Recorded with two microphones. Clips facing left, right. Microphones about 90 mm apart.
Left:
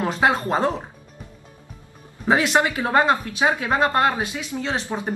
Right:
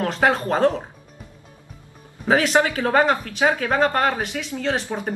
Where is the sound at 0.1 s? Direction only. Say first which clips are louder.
Even; 10° left (ahead or behind).